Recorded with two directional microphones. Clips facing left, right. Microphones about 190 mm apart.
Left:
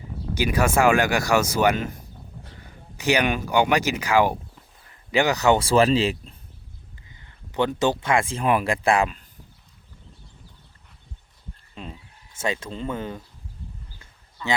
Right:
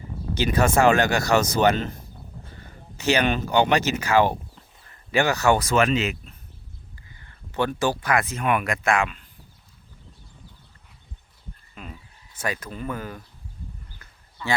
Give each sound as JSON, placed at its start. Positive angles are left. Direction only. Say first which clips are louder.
{"t": 0.3, "sound": "speech", "louder": "right 1 dB", "side_deg": 10}
{"t": 3.0, "sound": "speech", "louder": "even", "side_deg": 15}
{"t": 7.1, "sound": "speech", "louder": "even", "side_deg": 20}
{"t": 11.7, "sound": "speech", "louder": "left 3 dB", "side_deg": 30}